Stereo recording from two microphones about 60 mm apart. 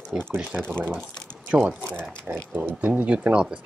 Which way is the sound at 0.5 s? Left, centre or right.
Centre.